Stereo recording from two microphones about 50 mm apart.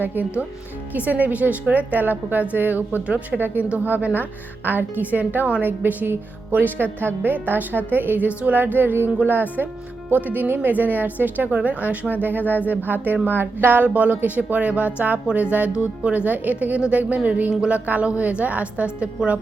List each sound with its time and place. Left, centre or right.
0.0 s a woman's voice: right
16.2 s a woman's voice: right